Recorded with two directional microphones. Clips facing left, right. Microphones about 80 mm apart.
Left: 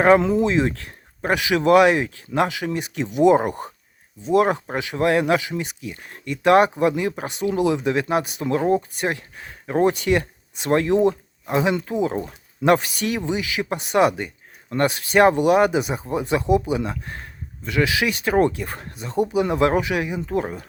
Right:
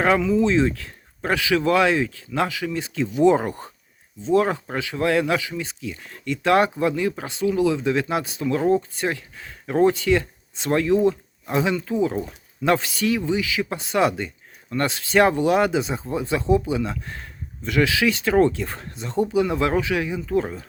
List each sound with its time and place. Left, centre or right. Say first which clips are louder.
0.2 s speech: even; left
0.4 s speech: right 1 dB; left